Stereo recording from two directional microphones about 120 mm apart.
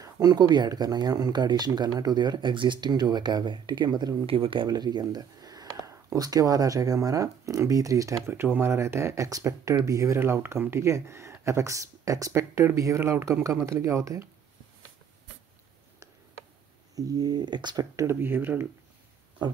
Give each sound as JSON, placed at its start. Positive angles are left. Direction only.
{"t": 0.0, "sound": "speech", "side_deg": -35}
{"t": 4.3, "sound": "speech", "side_deg": -45}
{"t": 16.9, "sound": "speech", "side_deg": -30}
{"t": 18.0, "sound": "speech", "side_deg": -20}